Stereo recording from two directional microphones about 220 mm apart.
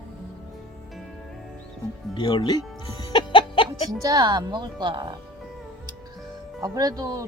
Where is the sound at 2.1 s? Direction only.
20° left (ahead or behind).